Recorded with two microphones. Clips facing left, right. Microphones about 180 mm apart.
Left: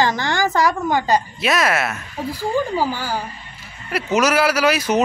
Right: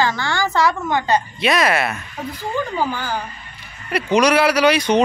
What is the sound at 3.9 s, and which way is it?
A woman's voice, 5° left (ahead or behind).